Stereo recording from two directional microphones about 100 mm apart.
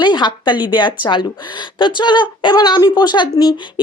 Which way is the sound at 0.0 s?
50° left (ahead or behind).